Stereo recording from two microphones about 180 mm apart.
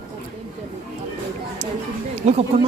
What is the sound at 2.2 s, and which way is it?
Speech, 40° right (ahead or behind).